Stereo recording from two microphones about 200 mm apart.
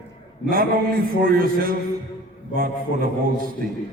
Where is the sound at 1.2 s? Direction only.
45° right (ahead or behind).